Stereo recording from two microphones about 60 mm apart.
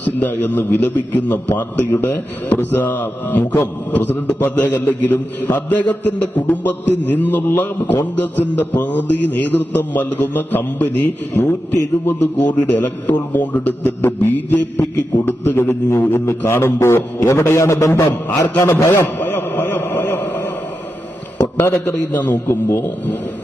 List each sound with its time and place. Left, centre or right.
0.0 s a man's voice: left
3.4 s a man's voice: left
18.9 s a sound: left
22.1 s a man's voice: left